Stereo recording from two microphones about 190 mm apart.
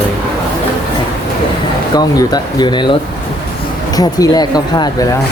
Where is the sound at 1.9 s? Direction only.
20° left (ahead or behind).